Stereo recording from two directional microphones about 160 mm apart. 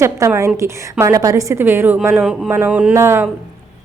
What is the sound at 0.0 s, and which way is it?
A woman's voice, 15° right (ahead or behind).